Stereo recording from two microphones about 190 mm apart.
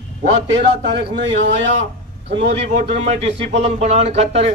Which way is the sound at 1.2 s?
70° right (ahead or behind).